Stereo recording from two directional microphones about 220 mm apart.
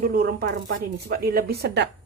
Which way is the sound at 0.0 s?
45° right (ahead or behind).